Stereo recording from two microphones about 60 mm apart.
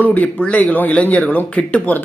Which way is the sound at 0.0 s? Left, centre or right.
Left.